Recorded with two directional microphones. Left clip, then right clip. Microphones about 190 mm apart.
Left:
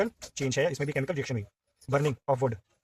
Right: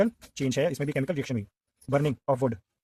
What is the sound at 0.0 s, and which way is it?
Speech, 35° right (ahead or behind).